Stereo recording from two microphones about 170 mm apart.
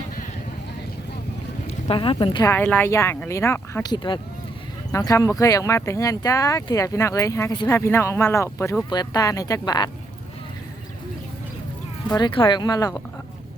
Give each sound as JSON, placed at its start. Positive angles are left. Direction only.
{"t": 1.6, "sound": "speech", "side_deg": 30}
{"t": 2.5, "sound": "speech", "side_deg": 10}
{"t": 3.9, "sound": "speech", "side_deg": 30}
{"t": 12.0, "sound": "speech", "side_deg": 25}